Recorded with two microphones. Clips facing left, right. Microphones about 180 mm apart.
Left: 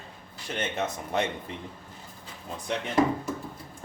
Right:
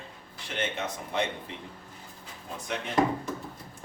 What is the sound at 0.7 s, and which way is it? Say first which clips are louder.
Speech: left 4 dB; 45° left (ahead or behind).